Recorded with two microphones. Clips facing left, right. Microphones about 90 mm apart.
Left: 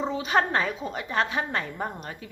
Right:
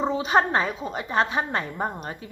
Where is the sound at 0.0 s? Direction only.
25° right (ahead or behind).